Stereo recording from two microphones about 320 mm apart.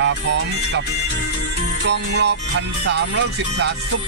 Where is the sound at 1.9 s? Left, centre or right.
Right.